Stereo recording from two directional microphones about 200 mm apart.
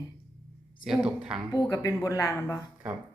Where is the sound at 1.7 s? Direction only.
15° left (ahead or behind).